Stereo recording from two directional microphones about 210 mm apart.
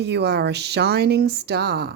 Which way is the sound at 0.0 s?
55° right (ahead or behind).